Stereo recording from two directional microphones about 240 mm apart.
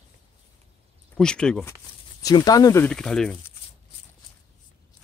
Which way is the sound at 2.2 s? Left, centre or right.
Centre.